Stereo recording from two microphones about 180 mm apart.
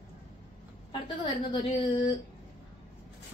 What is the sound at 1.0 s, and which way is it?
A woman's voice, 25° left (ahead or behind).